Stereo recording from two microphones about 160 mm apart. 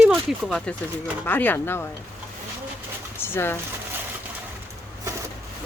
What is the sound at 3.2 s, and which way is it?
Speech, 15° left (ahead or behind).